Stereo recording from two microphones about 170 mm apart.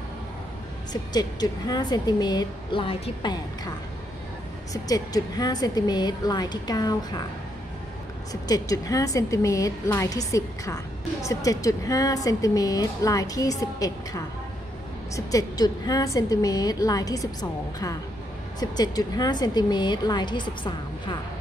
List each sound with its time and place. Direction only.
1.1 s a woman's voice: 25° left (ahead or behind)
4.8 s a woman's voice: 20° left (ahead or behind)
8.3 s a woman's voice: 20° left (ahead or behind)